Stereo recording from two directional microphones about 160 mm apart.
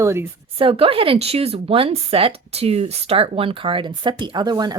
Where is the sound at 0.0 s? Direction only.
15° right (ahead or behind).